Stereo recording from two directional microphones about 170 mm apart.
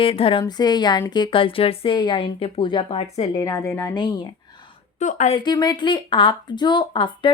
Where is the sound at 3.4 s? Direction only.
20° left (ahead or behind).